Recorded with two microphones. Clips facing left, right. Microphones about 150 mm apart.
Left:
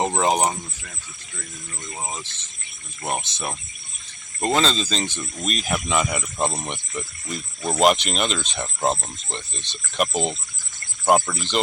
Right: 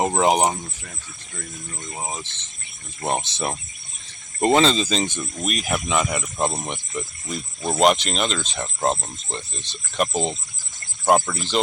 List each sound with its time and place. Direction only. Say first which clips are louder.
0.0 s speech: right 2 dB; 10° right (ahead or behind)
3.0 s speech: right 3 dB; 25° right (ahead or behind)
5.5 s speech: even; 5° right (ahead or behind)